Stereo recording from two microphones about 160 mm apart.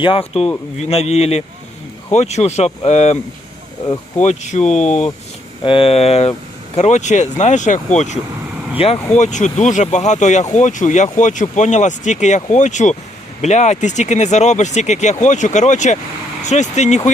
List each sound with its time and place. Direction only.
0.0 s speech: 35° left (ahead or behind)
4.2 s speech: 45° left (ahead or behind)
5.6 s speech: 35° left (ahead or behind)
8.8 s speech: 35° left (ahead or behind)
9.1 s speech: 45° left (ahead or behind)